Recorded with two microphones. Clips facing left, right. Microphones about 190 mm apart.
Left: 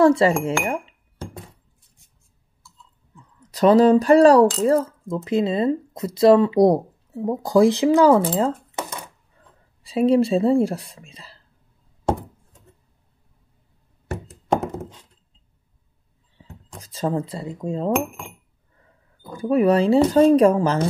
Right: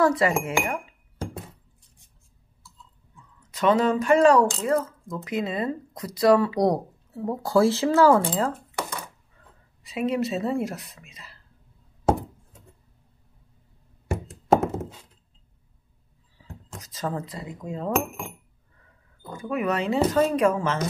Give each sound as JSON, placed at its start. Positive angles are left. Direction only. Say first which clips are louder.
{"t": 0.0, "sound": "speech", "louder": "left 6 dB", "side_deg": 30}
{"t": 3.5, "sound": "speech", "louder": "left 7 dB", "side_deg": 35}
{"t": 8.4, "sound": "a sound", "louder": "left 4 dB", "side_deg": 25}
{"t": 9.8, "sound": "speech", "louder": "left 8 dB", "side_deg": 30}
{"t": 14.5, "sound": "thunk", "louder": "right 2 dB", "side_deg": -5}
{"t": 16.4, "sound": "a sound", "louder": "even", "side_deg": 30}
{"t": 16.8, "sound": "speech", "louder": "left 6 dB", "side_deg": 30}
{"t": 19.3, "sound": "speech", "louder": "left 9 dB", "side_deg": 35}